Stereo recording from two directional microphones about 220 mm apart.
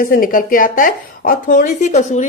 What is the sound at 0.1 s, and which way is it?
Speech, 40° left (ahead or behind).